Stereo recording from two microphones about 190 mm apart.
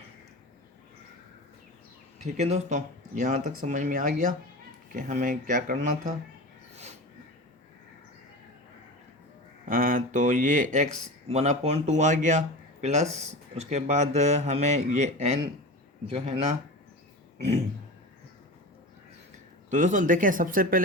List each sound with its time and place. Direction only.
2.2 s speech: 35° right (ahead or behind)
9.6 s speech: 45° right (ahead or behind)
19.7 s speech: 40° right (ahead or behind)